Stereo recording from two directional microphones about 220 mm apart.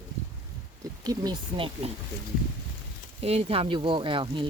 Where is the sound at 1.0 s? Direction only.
20° right (ahead or behind).